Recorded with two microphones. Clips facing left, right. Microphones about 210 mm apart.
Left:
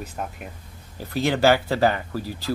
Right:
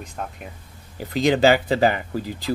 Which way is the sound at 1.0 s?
15° right (ahead or behind).